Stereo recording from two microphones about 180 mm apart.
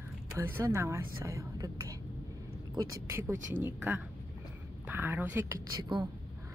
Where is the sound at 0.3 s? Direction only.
15° right (ahead or behind).